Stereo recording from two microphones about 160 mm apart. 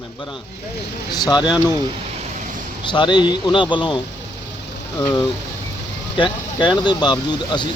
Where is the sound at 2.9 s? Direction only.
30° left (ahead or behind).